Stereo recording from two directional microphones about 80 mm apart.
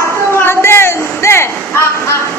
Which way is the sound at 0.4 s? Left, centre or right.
Left.